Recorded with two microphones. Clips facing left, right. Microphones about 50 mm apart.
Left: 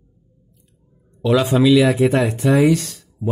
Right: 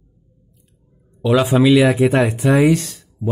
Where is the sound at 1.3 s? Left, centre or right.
Centre.